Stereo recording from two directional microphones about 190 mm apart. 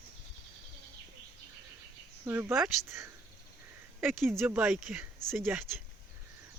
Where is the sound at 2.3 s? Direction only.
10° right (ahead or behind).